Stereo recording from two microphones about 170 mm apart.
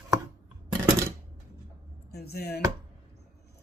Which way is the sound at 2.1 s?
70° left (ahead or behind).